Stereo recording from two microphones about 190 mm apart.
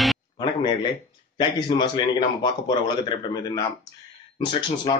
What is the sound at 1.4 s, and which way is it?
A man's voice, 25° left (ahead or behind).